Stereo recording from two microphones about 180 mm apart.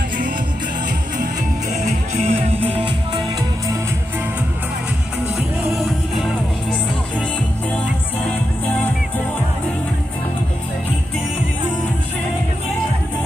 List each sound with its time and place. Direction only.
1.7 s music: 40° right (ahead or behind)
5.8 s music: centre (ahead or behind)